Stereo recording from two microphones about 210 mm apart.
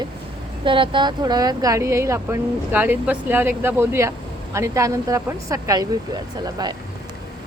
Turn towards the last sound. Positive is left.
turn(degrees=-20)  # may be behind; listen again after turning